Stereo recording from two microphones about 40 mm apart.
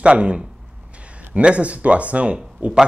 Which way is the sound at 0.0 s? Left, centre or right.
Right.